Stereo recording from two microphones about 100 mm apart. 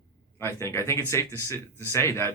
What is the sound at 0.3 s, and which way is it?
Speech, 25° left (ahead or behind).